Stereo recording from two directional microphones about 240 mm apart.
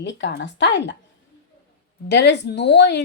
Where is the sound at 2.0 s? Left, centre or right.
Left.